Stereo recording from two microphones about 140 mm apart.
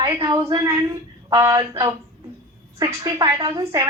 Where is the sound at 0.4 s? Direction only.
25° right (ahead or behind).